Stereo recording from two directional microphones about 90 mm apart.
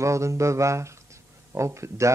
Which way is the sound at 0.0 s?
35° right (ahead or behind).